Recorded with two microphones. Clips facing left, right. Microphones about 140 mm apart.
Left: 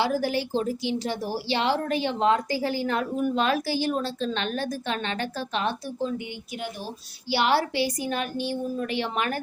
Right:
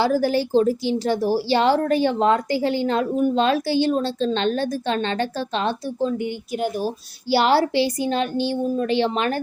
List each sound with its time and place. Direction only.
0.0 s a woman's voice: 35° right (ahead or behind)
2.5 s a woman's voice: 25° right (ahead or behind)